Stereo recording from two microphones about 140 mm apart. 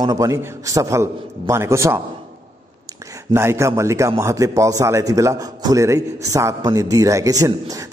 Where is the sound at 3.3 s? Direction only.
20° right (ahead or behind).